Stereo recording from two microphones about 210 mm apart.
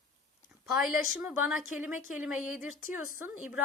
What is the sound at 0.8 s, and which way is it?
A woman's voice, centre (ahead or behind).